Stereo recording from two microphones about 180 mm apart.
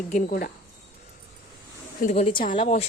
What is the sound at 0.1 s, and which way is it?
Speech, 50° left (ahead or behind).